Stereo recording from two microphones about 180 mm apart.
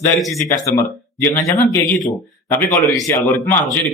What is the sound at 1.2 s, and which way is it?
Speech, 15° left (ahead or behind).